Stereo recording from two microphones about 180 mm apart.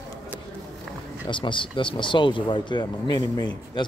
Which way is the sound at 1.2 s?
25° left (ahead or behind).